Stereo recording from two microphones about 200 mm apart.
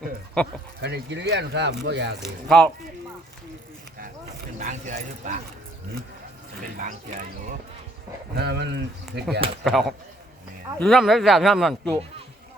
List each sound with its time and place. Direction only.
0.8 s speech: 55° right (ahead or behind)
2.2 s speech: 5° left (ahead or behind)
4.5 s speech: 35° right (ahead or behind)
6.7 s speech: 40° right (ahead or behind)
8.4 s speech: 60° right (ahead or behind)
9.6 s speech: centre (ahead or behind)